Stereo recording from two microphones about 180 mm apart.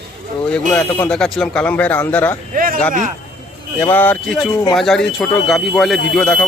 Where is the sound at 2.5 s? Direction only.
50° right (ahead or behind).